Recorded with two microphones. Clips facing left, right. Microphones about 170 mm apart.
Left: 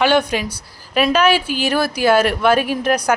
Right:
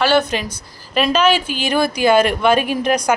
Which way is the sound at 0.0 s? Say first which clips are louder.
Even; 15° left (ahead or behind).